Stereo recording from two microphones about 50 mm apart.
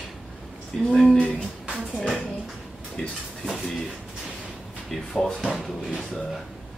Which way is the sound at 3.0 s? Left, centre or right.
Centre.